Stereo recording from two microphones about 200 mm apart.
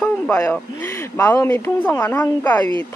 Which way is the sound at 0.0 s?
10° left (ahead or behind).